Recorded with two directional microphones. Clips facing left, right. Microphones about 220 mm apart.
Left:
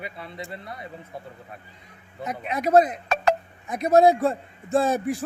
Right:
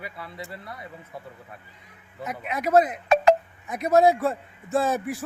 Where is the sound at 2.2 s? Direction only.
35° left (ahead or behind).